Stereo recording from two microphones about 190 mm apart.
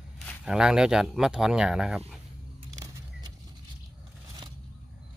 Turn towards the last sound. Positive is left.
turn(degrees=-20)  # may be behind; listen again after turning